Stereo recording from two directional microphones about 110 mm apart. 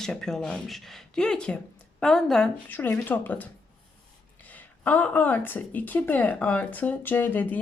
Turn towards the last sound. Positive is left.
turn(degrees=15)  # may be behind; listen again after turning